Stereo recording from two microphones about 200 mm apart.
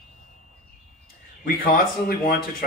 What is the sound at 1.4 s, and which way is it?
A man's voice, 50° left (ahead or behind).